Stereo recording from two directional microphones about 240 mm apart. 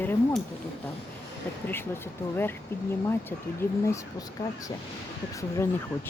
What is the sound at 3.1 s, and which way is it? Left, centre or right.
Speech, centre.